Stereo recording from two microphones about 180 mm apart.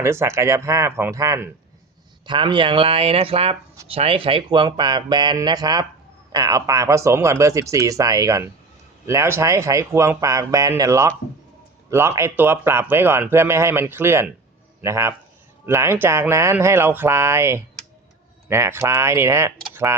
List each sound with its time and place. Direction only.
0.0 s speech: 15° right (ahead or behind)